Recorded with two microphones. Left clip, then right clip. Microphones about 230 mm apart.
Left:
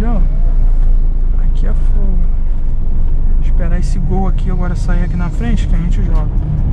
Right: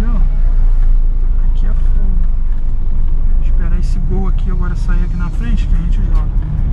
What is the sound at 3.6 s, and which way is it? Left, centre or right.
Vehicle, left.